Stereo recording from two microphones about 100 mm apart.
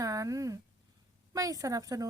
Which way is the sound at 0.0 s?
35° right (ahead or behind).